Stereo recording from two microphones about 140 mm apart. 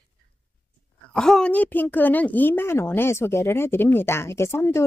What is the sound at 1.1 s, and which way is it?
A woman's voice, 5° left (ahead or behind).